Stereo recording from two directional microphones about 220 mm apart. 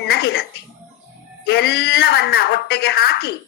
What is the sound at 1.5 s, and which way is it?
A woman's voice, 50° left (ahead or behind).